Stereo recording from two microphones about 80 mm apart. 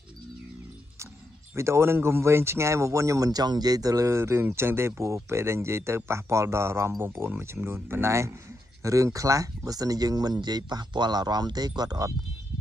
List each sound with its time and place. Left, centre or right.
1.5 s speech: right